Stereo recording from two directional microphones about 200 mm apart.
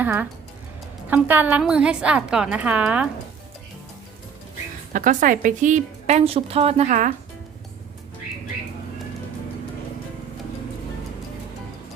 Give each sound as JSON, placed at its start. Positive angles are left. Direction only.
{"t": 0.0, "sound": "a woman's voice", "side_deg": -10}
{"t": 4.9, "sound": "a woman's voice", "side_deg": -40}